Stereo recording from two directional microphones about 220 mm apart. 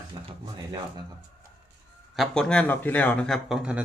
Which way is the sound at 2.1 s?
5° left (ahead or behind).